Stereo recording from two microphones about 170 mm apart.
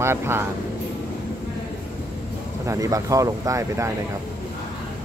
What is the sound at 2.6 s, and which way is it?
Speech, 20° right (ahead or behind).